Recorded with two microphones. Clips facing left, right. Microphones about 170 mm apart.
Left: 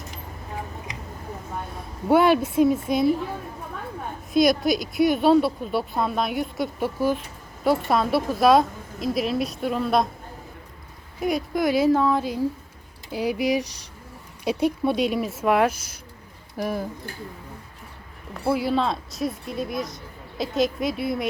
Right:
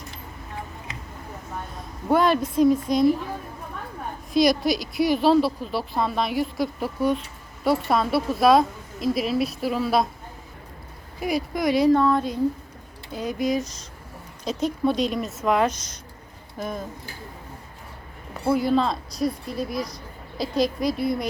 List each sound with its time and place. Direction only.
2.0 s speech: 5° left (ahead or behind)
4.4 s speech: centre (ahead or behind)
11.2 s speech: centre (ahead or behind)
13.6 s speech: 75° left (ahead or behind)
14.8 s speech: 5° left (ahead or behind)
18.4 s speech: 5° left (ahead or behind)